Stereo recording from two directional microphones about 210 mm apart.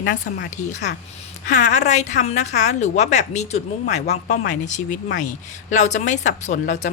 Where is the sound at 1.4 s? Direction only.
35° left (ahead or behind).